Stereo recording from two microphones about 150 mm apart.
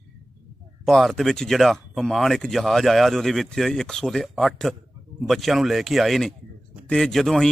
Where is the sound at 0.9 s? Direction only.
Centre (ahead or behind).